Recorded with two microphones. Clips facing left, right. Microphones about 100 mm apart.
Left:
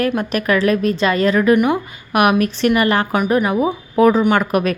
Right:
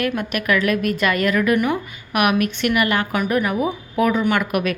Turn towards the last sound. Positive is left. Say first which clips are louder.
# left 4 dB
turn(degrees=35)  # may be behind; listen again after turning